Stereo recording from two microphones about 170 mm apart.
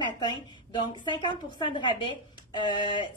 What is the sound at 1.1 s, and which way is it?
A woman's voice, 25° left (ahead or behind).